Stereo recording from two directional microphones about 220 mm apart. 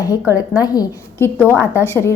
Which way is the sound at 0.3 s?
15° left (ahead or behind).